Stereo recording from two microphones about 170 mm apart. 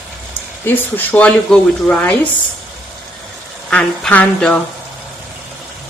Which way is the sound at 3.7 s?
5° left (ahead or behind).